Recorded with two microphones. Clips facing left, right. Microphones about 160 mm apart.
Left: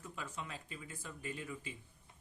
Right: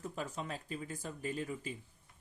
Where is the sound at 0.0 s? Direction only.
40° right (ahead or behind).